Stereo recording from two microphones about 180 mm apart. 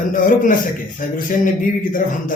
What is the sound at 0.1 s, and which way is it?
Speech, 50° left (ahead or behind).